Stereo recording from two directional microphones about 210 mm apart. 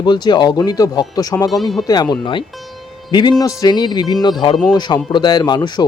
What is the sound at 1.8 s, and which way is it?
Speech, 20° left (ahead or behind).